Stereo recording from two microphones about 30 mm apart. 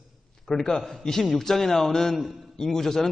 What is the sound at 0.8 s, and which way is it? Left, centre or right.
A man's voice, centre.